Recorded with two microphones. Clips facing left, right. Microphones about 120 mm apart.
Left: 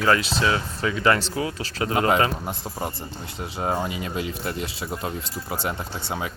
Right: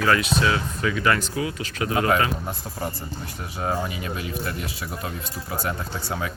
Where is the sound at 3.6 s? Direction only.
25° left (ahead or behind).